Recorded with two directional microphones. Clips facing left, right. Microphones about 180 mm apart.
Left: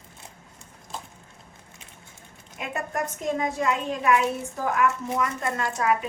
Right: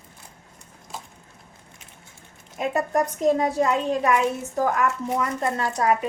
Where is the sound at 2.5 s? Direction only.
40° right (ahead or behind).